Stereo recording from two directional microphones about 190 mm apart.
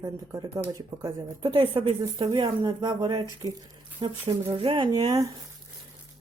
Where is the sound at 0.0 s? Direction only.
20° right (ahead or behind).